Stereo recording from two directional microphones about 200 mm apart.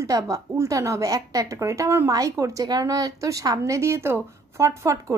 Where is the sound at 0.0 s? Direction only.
15° right (ahead or behind).